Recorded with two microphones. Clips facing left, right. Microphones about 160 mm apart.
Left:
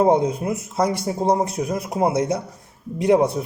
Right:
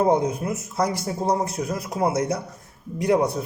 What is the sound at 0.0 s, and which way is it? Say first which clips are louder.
A man's voice: left 3 dB; 25° left (ahead or behind).